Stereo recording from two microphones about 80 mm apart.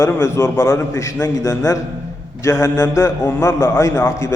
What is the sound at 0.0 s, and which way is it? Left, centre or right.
A man's voice, left.